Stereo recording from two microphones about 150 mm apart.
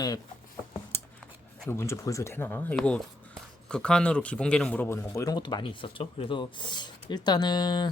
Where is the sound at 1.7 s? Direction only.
20° left (ahead or behind).